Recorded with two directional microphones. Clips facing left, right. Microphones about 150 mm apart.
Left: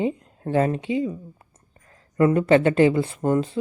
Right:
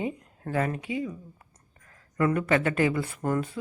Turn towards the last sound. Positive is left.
turn(degrees=25)  # may be behind; listen again after turning